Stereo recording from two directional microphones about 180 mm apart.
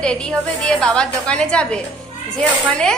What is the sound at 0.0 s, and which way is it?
A woman's voice, 5° left (ahead or behind).